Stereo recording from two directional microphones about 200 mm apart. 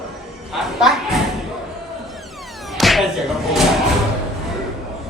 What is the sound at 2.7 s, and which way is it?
Music, centre (ahead or behind).